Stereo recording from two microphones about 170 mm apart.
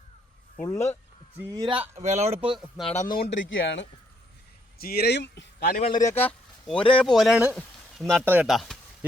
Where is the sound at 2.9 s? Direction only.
45° left (ahead or behind).